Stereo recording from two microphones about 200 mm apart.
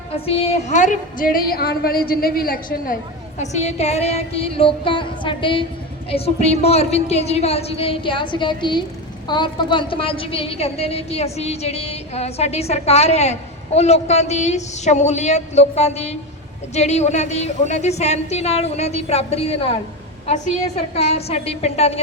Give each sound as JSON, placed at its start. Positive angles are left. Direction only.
{"t": 0.3, "sound": "a woman's voice", "side_deg": 30}